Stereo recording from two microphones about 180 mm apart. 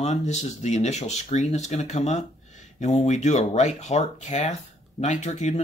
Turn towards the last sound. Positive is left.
turn(degrees=40)  # may be behind; listen again after turning